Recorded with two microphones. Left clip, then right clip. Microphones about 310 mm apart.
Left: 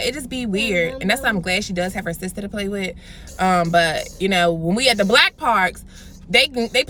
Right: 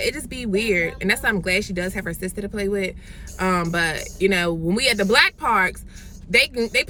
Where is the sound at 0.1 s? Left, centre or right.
Centre.